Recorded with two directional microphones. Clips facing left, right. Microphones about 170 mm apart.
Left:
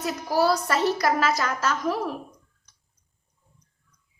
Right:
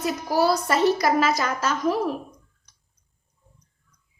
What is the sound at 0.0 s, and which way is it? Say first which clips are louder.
A woman's voice: right 1 dB; 15° right (ahead or behind).